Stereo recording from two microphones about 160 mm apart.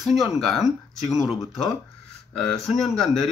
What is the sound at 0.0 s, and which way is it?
Speech, centre (ahead or behind).